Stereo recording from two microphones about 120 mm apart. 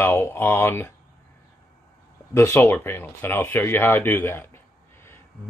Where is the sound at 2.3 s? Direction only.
25° left (ahead or behind).